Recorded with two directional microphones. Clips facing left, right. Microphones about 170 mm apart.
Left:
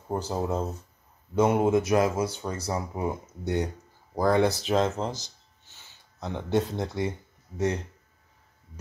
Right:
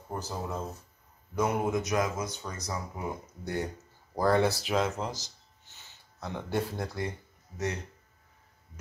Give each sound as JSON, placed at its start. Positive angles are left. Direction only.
{"t": 0.1, "sound": "speech", "side_deg": 30}